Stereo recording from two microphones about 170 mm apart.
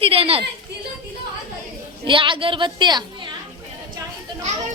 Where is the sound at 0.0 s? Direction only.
35° right (ahead or behind).